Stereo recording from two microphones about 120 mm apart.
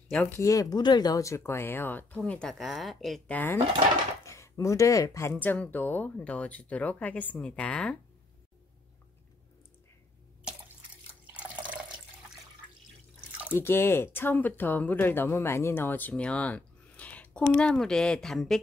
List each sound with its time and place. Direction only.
0.3 s speech: 25° left (ahead or behind); by 3.2 s centre (ahead or behind)
3.3 s speech: 15° left (ahead or behind)
4.2 s speech: 25° left (ahead or behind)
11.2 s water: 10° right (ahead or behind)
13.5 s speech: 20° left (ahead or behind); by 18.6 s 5° left (ahead or behind)